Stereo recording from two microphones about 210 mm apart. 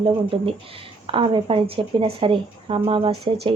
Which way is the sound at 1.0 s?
25° right (ahead or behind).